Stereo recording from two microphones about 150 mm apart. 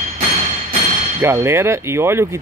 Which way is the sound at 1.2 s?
15° right (ahead or behind).